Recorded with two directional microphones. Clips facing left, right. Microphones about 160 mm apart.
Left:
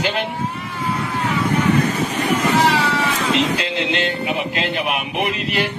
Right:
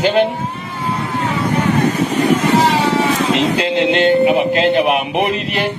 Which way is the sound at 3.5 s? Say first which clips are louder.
Right 7 dB; 30° right (ahead or behind).